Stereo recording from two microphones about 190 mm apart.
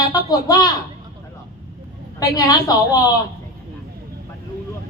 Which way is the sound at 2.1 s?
20° left (ahead or behind).